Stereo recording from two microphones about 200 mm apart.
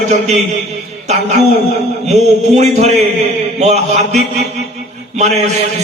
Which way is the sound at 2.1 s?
35° right (ahead or behind).